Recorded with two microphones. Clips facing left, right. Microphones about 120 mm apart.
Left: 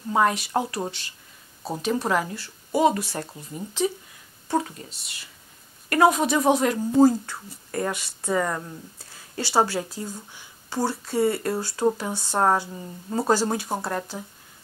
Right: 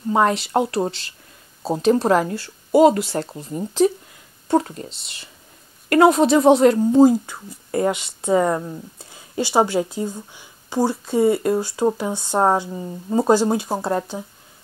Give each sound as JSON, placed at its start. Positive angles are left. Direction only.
{"t": 0.2, "sound": "speech", "side_deg": -30}
{"t": 2.0, "sound": "a woman's voice", "side_deg": -40}
{"t": 2.4, "sound": "a sound", "side_deg": -25}
{"t": 3.0, "sound": "speech", "side_deg": -25}
{"t": 3.5, "sound": "speech", "side_deg": -45}
{"t": 4.8, "sound": "speech", "side_deg": -25}
{"t": 7.0, "sound": "speech", "side_deg": -15}